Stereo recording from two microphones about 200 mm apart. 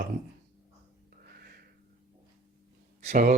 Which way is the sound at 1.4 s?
50° right (ahead or behind).